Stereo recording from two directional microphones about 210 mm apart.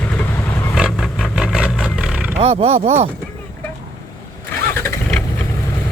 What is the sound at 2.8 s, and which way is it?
Speech, 30° right (ahead or behind).